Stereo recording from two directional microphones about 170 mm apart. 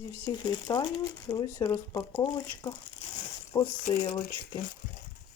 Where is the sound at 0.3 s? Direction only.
25° left (ahead or behind).